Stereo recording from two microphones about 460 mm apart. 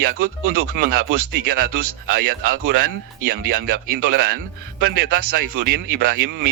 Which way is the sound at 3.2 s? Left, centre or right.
Right.